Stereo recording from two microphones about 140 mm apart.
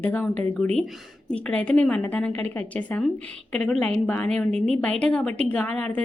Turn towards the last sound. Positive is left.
turn(degrees=10)  # may be behind; listen again after turning